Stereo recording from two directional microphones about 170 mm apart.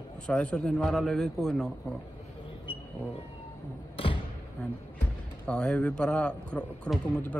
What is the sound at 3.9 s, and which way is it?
Thump, 30° left (ahead or behind).